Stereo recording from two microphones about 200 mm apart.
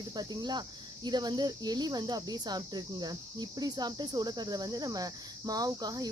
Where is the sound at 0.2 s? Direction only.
20° right (ahead or behind).